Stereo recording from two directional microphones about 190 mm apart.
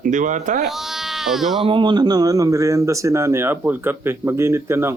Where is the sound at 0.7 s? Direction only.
Centre (ahead or behind).